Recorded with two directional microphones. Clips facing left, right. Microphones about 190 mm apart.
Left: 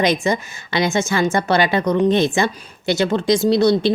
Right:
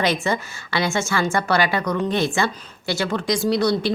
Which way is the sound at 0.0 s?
15° left (ahead or behind).